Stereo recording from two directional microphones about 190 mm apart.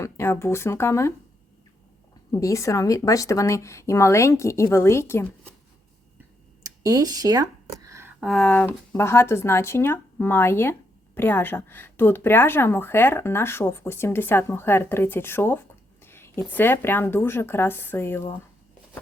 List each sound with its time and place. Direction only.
0.0 s speech: 15° left (ahead or behind)
2.3 s speech: 15° left (ahead or behind)
6.6 s speech: 20° right (ahead or behind)
7.9 s a sound: 15° right (ahead or behind)
8.2 s speech: centre (ahead or behind)